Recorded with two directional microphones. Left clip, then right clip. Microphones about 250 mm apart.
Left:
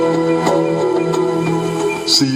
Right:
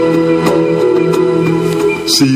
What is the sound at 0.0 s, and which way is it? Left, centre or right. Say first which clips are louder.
Music: right 4 dB; right.